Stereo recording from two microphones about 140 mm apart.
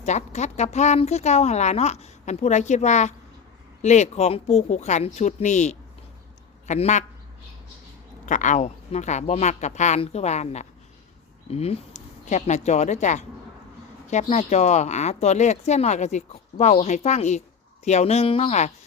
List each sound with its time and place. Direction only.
0.0 s speech: 55° left (ahead or behind)
8.3 s speech: 60° left (ahead or behind)